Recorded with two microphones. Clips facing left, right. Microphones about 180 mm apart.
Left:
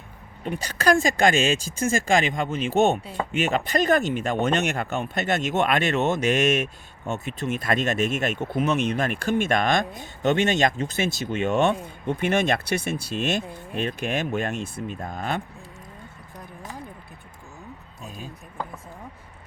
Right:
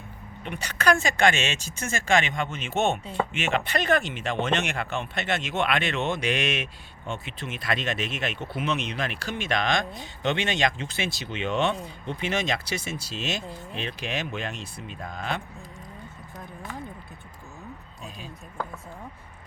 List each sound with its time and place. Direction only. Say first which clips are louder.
0.4 s speech: left 2 dB; 35° left (ahead or behind)